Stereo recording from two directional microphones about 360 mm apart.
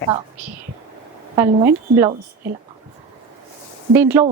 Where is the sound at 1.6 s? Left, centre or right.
Centre.